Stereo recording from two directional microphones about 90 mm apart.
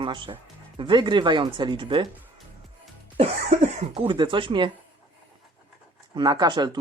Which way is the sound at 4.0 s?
65° right (ahead or behind).